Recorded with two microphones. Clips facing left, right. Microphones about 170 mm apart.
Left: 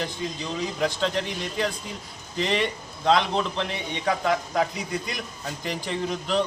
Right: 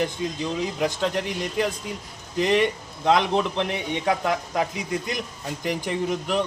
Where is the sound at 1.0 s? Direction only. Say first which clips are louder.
Right 1 dB; 10° right (ahead or behind).